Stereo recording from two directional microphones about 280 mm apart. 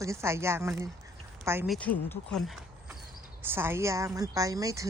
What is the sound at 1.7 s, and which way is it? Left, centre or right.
Speech, centre.